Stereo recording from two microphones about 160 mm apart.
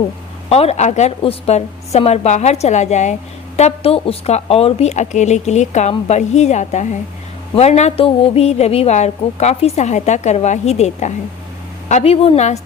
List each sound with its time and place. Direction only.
0.5 s a woman's voice: 40° left (ahead or behind)